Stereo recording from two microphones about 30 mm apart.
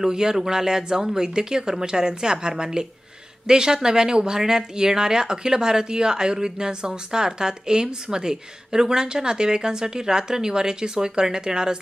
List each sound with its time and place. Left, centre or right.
0.0 s a woman's voice: right